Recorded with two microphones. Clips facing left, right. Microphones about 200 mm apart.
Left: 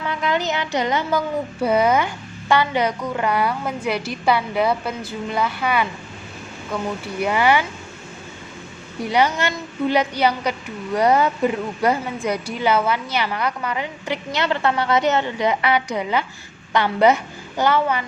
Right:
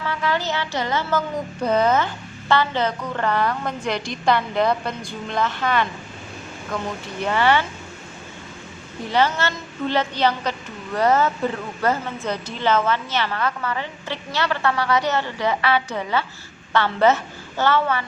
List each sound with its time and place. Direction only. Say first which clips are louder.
0.0 s a woman's voice: left 2 dB; 20° left (ahead or behind)
9.0 s speech: left 1 dB; 15° left (ahead or behind)